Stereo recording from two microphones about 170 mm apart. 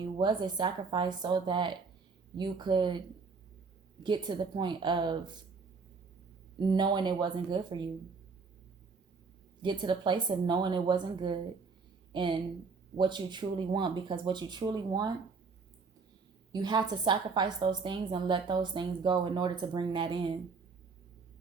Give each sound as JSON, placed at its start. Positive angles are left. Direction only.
{"t": 0.0, "sound": "a woman's voice", "side_deg": -25}
{"t": 4.0, "sound": "a woman's voice", "side_deg": -25}
{"t": 6.6, "sound": "a woman's voice", "side_deg": -25}
{"t": 9.6, "sound": "a woman's voice", "side_deg": -25}
{"t": 16.5, "sound": "a woman's voice", "side_deg": -25}